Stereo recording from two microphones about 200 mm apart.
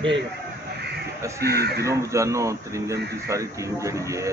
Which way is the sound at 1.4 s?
50° right (ahead or behind).